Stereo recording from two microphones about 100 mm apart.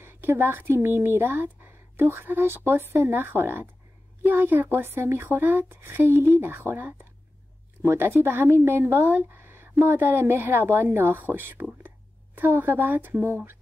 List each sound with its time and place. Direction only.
0.0 s speech: 25° right (ahead or behind)